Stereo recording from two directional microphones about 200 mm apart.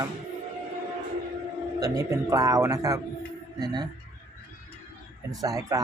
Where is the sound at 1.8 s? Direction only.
20° right (ahead or behind).